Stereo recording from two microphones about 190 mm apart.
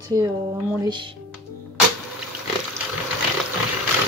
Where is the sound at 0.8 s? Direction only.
25° right (ahead or behind).